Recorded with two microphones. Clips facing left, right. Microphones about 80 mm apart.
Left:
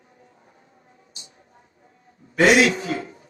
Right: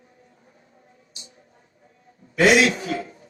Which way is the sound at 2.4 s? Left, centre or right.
Left.